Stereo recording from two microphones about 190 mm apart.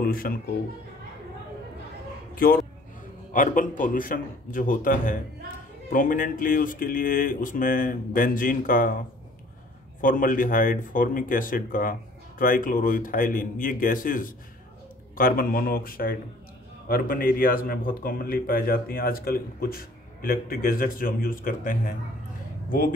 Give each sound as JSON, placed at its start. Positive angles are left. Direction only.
{"t": 0.0, "sound": "speech", "side_deg": 50}
{"t": 2.3, "sound": "a man's voice", "side_deg": 50}
{"t": 10.0, "sound": "a man's voice", "side_deg": 45}